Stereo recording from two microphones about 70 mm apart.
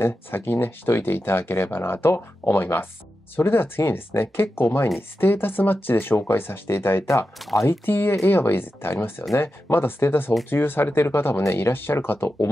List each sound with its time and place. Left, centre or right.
0.0 s speech: left